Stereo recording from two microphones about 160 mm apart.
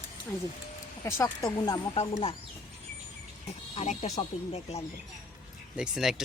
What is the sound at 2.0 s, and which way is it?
Speech, 40° left (ahead or behind).